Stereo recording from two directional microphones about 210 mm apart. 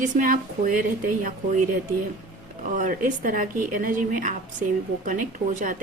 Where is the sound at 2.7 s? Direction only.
40° right (ahead or behind).